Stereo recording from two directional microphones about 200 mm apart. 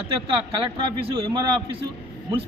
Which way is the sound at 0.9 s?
25° right (ahead or behind).